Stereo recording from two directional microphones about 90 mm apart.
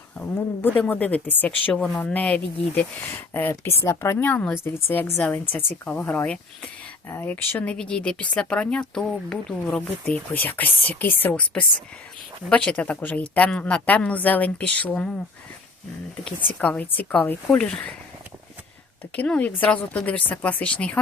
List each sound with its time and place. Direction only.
0.2 s speech: 20° left (ahead or behind)
3.1 s speech: 25° left (ahead or behind)
16.6 s speech: 15° left (ahead or behind)
19.1 s speech: 15° left (ahead or behind)